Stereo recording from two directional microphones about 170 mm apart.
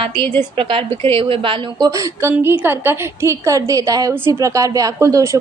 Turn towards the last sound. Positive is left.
turn(degrees=-20)  # may be behind; listen again after turning